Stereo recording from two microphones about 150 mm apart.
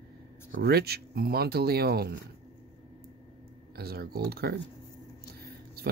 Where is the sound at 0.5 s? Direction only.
90° right.